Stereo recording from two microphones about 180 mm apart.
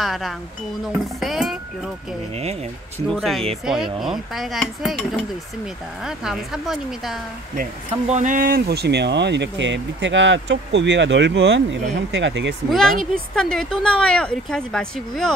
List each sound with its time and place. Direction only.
0.0 s speech: centre (ahead or behind)
3.1 s speech: centre (ahead or behind)
8.1 s speech: 45° right (ahead or behind); by 12.5 s 80° right
12.6 s speech: centre (ahead or behind)